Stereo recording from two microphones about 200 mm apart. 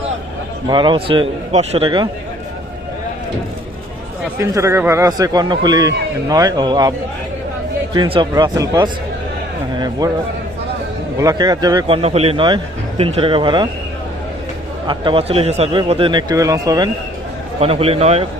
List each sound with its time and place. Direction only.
0.7 s a man's voice: 25° right (ahead or behind)
4.4 s a man's voice: 15° right (ahead or behind)
7.9 s a man's voice: 25° right (ahead or behind)
11.2 s a man's voice: 20° right (ahead or behind)
12.0 s a man's voice: 30° right (ahead or behind)
14.8 s a man's voice: 25° right (ahead or behind)
17.6 s a man's voice: 30° right (ahead or behind)